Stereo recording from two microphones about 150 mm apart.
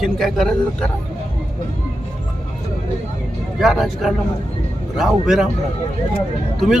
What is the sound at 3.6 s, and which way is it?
Speech, centre (ahead or behind).